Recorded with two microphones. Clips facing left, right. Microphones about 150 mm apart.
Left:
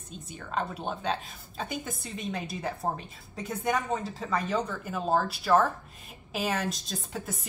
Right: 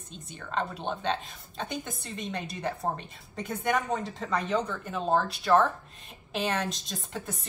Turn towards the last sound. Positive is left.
turn(degrees=5)  # may be behind; listen again after turning